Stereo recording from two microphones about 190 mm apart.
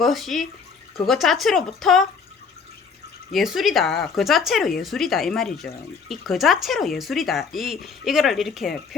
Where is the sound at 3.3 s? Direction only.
Centre (ahead or behind).